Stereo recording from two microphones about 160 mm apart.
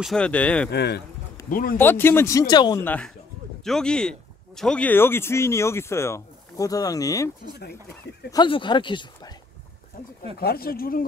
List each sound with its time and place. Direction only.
0.0 s speech: 5° left (ahead or behind)
0.7 s speech: 90° left
1.5 s speech: 65° left (ahead or behind)
1.8 s speech: 15° left (ahead or behind)
2.8 s speech: 10° left (ahead or behind)
8.3 s speech: 30° left (ahead or behind)
10.3 s speech: 75° left (ahead or behind)